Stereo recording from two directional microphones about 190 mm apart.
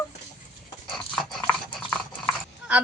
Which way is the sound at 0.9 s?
Centre (ahead or behind).